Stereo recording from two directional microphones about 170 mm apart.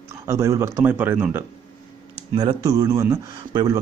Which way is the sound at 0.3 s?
15° right (ahead or behind).